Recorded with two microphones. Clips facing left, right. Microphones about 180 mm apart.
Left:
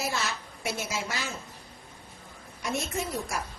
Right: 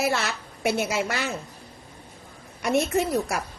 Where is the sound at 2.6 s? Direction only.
65° right (ahead or behind).